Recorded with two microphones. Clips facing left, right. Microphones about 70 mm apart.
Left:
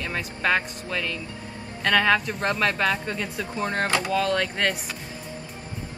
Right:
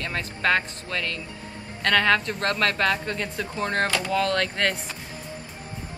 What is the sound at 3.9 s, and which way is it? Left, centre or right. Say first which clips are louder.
Speech: left 2 dB; left.